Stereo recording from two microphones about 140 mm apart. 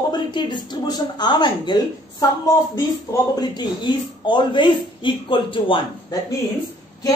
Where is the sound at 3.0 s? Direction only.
30° left (ahead or behind).